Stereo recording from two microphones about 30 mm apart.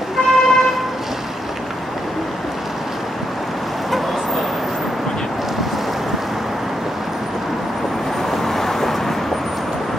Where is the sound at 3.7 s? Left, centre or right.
Centre.